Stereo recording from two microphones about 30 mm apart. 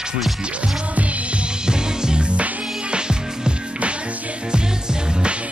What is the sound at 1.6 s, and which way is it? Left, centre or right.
Music, right.